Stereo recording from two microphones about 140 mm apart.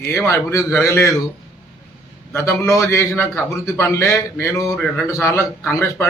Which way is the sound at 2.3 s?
20° left (ahead or behind).